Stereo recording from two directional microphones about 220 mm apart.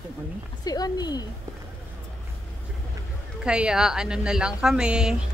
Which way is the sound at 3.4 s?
5° right (ahead or behind).